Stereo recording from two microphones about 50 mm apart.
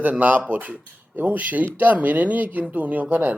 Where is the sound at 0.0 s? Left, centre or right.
Right.